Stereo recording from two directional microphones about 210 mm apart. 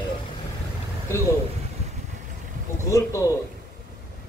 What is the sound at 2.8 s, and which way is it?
Speech, 15° left (ahead or behind).